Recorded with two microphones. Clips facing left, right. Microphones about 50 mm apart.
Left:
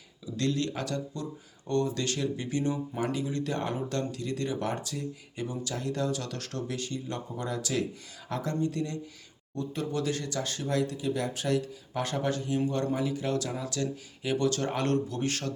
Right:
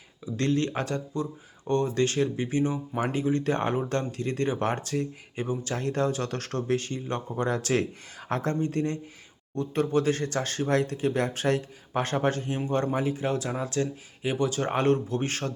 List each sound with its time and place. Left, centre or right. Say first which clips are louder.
0.3 s speech: right 4 dB; right
3.0 s speech: right 7 dB; right
12.5 s speech: right 2 dB; right